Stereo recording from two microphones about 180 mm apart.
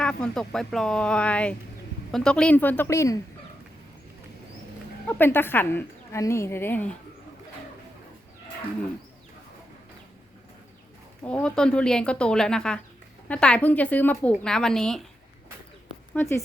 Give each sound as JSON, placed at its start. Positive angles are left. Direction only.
{"t": 0.0, "sound": "a woman's voice", "side_deg": 5}
{"t": 5.0, "sound": "a woman's voice", "side_deg": 10}
{"t": 11.2, "sound": "a woman's voice", "side_deg": 10}
{"t": 16.1, "sound": "a woman's voice", "side_deg": 15}